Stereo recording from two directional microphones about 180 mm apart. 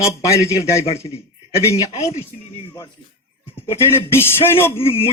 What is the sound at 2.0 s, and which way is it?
Speech, 35° left (ahead or behind).